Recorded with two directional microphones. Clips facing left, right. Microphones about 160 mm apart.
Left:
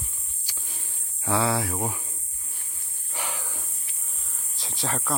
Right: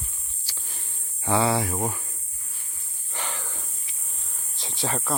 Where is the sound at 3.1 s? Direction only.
10° left (ahead or behind).